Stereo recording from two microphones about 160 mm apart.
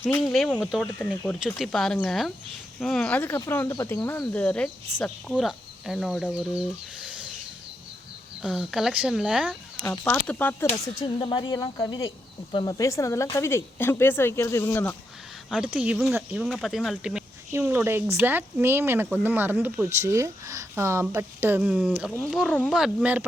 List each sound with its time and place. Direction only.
0.0 s speech: 15° left (ahead or behind)
0.3 s speech: 5° left (ahead or behind)
8.4 s speech: 5° right (ahead or behind)
9.9 s speech: 5° left (ahead or behind)
10.8 s speech: 30° left (ahead or behind); by 14.9 s 15° left (ahead or behind)
15.4 s speech: 5° right (ahead or behind)